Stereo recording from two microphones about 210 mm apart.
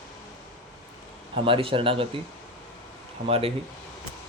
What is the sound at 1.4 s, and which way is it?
Speech, 25° right (ahead or behind).